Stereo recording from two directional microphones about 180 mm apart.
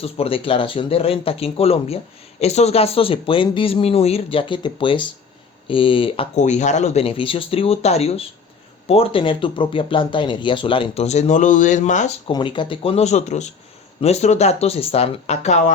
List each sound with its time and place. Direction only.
0.0 s speech: 30° left (ahead or behind)
6.3 s speech: 40° left (ahead or behind)
12.3 s speech: 25° left (ahead or behind)